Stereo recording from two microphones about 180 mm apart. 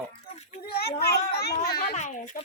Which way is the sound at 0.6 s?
60° left (ahead or behind).